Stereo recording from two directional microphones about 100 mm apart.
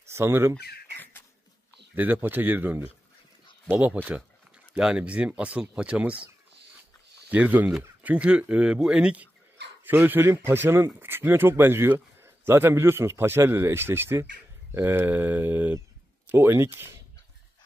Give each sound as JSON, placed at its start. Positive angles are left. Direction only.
{"t": 0.1, "sound": "speech", "side_deg": -25}
{"t": 2.0, "sound": "speech", "side_deg": -20}
{"t": 7.2, "sound": "speech", "side_deg": -15}